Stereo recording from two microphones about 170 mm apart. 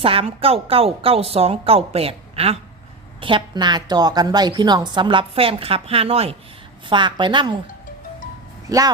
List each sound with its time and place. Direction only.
0.0 s a woman's voice: 35° right (ahead or behind)